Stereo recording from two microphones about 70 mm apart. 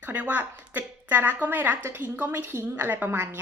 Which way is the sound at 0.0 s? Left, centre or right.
Right.